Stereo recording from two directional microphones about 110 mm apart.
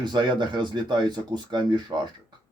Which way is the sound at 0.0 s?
45° right (ahead or behind).